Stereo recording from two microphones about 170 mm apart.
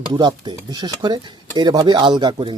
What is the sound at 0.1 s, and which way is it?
Speech, 25° right (ahead or behind).